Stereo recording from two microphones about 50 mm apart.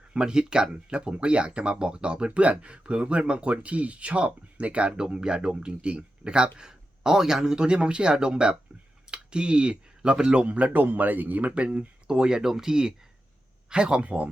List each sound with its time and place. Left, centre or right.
0.1 s speech: centre